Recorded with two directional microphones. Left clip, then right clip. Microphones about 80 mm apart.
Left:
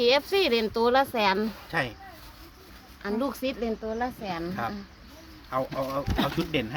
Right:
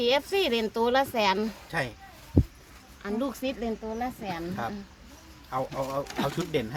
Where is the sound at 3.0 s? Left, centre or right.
Left.